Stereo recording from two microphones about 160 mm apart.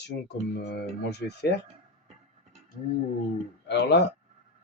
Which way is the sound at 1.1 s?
90° left.